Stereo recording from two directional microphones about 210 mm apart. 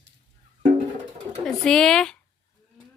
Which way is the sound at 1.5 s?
Centre (ahead or behind).